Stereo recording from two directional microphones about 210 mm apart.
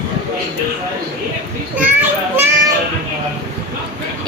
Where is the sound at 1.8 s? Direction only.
10° right (ahead or behind).